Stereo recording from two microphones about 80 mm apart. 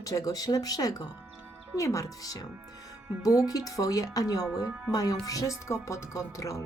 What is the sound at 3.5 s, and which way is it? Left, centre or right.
Speech, left.